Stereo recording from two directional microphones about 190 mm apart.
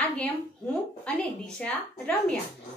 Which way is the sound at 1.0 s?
5° left (ahead or behind).